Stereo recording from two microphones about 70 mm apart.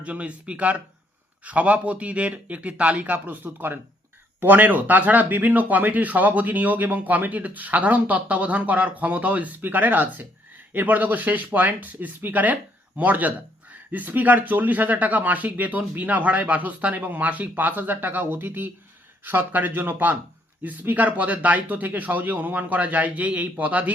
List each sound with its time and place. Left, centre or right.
0.0 s speech: centre